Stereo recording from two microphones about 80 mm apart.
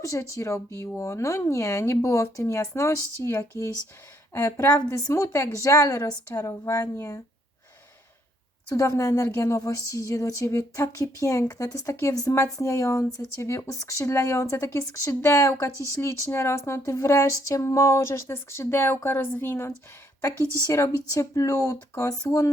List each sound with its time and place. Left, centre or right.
0.0 s speech: left
4.6 s a woman's voice: left
8.7 s a woman's voice: left
20.3 s speech: right
20.7 s speech: left